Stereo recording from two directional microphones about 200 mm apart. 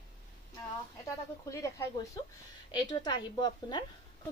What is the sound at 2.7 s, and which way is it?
A woman's voice, 20° left (ahead or behind).